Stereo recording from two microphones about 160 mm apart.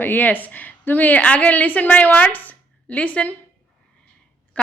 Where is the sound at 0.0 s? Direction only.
10° left (ahead or behind).